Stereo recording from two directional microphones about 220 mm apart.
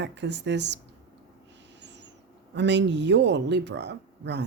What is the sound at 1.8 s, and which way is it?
Owl, 55° right (ahead or behind).